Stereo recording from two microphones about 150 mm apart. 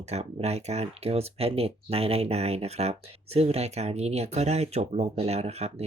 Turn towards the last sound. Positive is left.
turn(degrees=-45)  # may be behind; listen again after turning